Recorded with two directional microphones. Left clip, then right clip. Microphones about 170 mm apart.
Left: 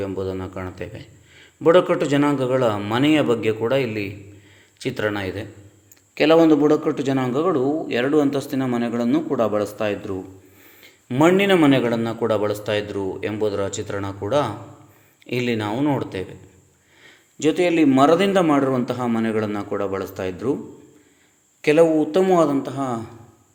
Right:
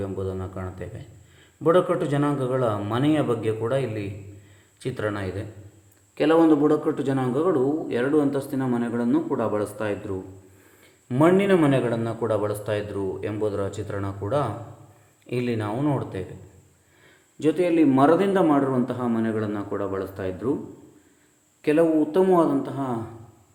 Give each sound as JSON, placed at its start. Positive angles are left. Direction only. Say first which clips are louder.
{"t": 0.0, "sound": "a man's voice", "louder": "left 4 dB", "side_deg": 20}
{"t": 17.4, "sound": "a man's voice", "louder": "left 3 dB", "side_deg": 10}
{"t": 21.6, "sound": "a man's voice", "louder": "left 5 dB", "side_deg": 15}